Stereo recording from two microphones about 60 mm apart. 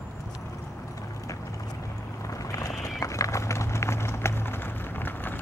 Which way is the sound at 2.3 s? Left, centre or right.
Left.